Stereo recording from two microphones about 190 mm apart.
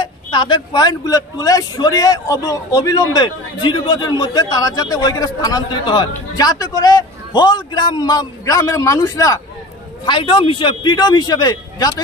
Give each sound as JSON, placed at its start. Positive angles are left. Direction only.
{"t": 0.0, "sound": "speech", "side_deg": 25}